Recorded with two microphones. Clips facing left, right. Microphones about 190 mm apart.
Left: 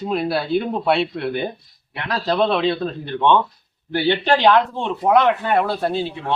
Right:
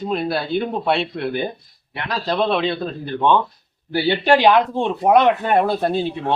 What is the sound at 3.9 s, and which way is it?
Speech, 10° right (ahead or behind).